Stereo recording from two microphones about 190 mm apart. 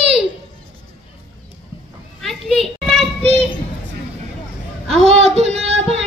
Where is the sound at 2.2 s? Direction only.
Centre (ahead or behind).